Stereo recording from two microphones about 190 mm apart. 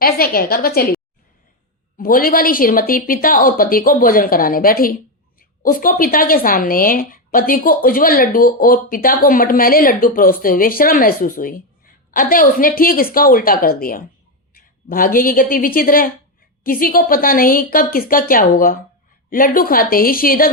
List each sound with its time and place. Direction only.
0.0 s a woman's voice: 50° left (ahead or behind)
2.0 s a woman's voice: 50° left (ahead or behind)